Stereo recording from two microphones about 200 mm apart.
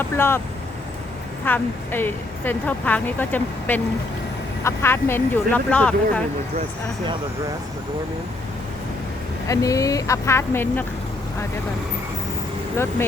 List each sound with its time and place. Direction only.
0.0 s a woman's voice: 10° left (ahead or behind)
1.5 s a woman's voice: 10° left (ahead or behind)
9.5 s a woman's voice: 15° left (ahead or behind)
12.7 s a woman's voice: 10° left (ahead or behind)